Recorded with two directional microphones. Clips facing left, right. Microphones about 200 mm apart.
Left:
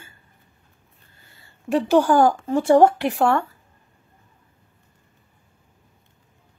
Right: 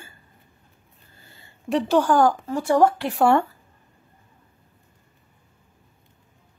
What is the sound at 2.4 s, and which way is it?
Speech, 25° left (ahead or behind).